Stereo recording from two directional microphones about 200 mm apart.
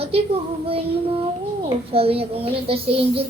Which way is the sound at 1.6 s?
30° right (ahead or behind).